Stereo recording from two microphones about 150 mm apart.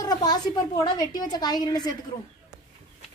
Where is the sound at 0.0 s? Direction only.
25° left (ahead or behind).